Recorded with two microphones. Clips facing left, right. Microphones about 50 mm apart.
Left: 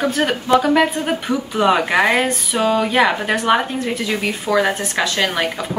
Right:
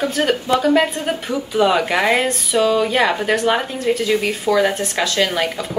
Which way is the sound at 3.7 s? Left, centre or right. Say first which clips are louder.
Right 3 dB; left.